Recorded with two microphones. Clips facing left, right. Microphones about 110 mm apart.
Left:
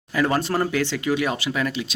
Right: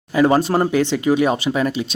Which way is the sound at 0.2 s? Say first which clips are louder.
Right 6 dB; 20° right (ahead or behind).